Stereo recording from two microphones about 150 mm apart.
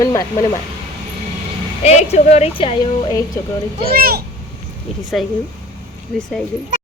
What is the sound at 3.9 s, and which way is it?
Speech, 90° right.